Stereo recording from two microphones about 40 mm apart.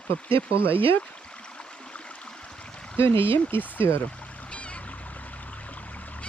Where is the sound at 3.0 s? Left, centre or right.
Left.